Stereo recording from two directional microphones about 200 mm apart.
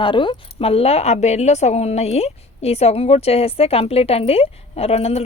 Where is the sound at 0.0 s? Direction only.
25° left (ahead or behind).